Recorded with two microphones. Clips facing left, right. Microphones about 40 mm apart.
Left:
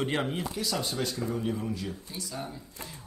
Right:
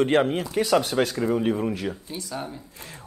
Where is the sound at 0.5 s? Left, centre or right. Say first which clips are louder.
Right 14 dB; right.